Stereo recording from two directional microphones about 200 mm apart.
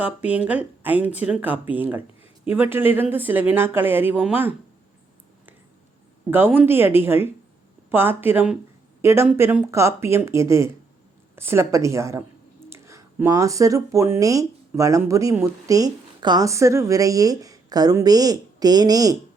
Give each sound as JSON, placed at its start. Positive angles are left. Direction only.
{"t": 0.0, "sound": "speech", "side_deg": -5}
{"t": 6.3, "sound": "a woman's voice", "side_deg": -10}